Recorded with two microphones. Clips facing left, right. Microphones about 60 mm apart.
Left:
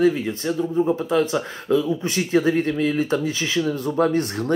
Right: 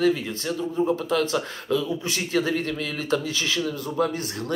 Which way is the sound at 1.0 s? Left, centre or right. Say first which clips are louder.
Left 3 dB; left.